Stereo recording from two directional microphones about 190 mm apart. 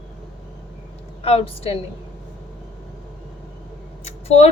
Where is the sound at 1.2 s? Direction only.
30° left (ahead or behind).